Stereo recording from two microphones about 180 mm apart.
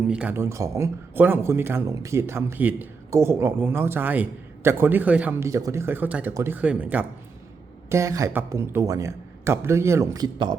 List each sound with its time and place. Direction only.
0.1 s speech: 5° right (ahead or behind); by 10.6 s 25° right (ahead or behind)